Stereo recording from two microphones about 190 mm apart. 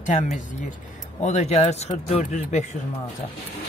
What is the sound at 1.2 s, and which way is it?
Speech, 35° left (ahead or behind).